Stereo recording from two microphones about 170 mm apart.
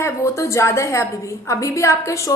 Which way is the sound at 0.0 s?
15° left (ahead or behind).